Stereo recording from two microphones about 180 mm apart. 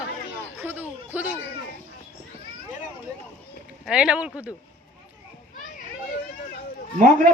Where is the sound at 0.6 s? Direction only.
10° right (ahead or behind).